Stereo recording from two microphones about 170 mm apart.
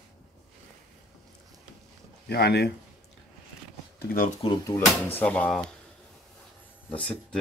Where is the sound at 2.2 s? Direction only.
70° left (ahead or behind).